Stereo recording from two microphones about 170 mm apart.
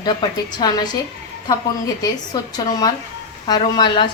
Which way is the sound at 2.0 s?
25° left (ahead or behind).